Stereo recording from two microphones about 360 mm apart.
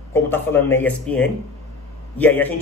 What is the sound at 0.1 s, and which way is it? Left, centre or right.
Speech, centre.